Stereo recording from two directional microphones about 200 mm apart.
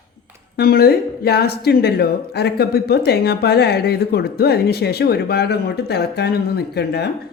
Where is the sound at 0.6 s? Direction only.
50° left (ahead or behind).